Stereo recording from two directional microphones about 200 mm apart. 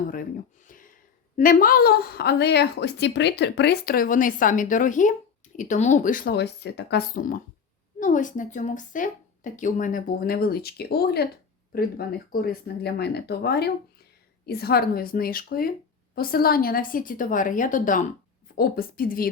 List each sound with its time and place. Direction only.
1.4 s a woman's voice: 45° left (ahead or behind)
6.3 s a woman's voice: 60° left (ahead or behind)